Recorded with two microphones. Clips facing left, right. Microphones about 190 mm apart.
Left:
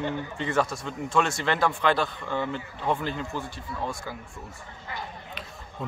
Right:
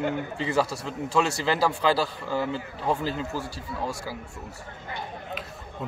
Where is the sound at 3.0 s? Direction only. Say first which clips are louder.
Right 2 dB; 35° right (ahead or behind).